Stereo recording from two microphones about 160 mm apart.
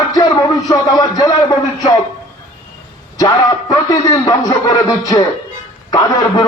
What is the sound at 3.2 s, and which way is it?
A man's voice, 20° left (ahead or behind).